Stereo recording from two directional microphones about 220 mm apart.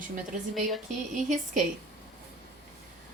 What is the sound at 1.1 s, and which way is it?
Speech, 35° right (ahead or behind).